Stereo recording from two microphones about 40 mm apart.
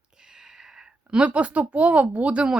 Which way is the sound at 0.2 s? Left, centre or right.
Centre.